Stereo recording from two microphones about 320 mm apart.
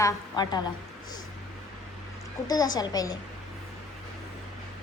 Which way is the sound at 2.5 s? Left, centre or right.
Centre.